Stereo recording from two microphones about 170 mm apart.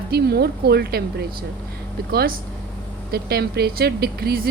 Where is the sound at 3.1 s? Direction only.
70° right (ahead or behind).